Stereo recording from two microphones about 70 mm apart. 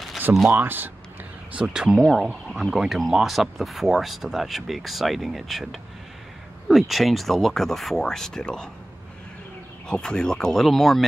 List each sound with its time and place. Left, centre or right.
0.5 s speech: right
1.5 s speech: centre
9.8 s speech: centre